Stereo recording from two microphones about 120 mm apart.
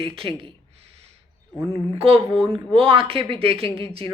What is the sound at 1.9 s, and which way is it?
A woman's voice, 50° right (ahead or behind).